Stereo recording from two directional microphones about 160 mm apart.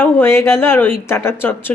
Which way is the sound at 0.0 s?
15° left (ahead or behind).